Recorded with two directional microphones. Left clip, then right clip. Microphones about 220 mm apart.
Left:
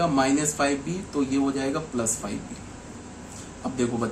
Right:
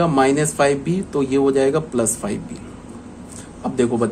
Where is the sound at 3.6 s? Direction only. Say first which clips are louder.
Right 8 dB; 40° right (ahead or behind).